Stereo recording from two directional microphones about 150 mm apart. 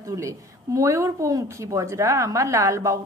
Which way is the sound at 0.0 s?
20° right (ahead or behind).